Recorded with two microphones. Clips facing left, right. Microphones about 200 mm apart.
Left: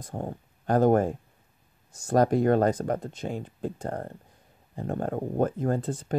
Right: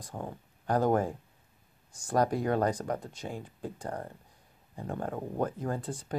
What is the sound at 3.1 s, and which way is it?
Speech, 25° left (ahead or behind).